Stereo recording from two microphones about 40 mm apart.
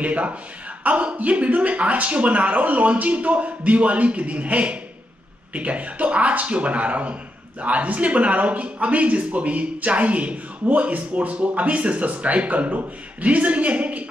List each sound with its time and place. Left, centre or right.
0.0 s speech: right